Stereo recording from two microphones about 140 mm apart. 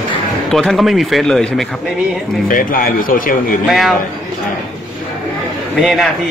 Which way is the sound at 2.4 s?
85° left.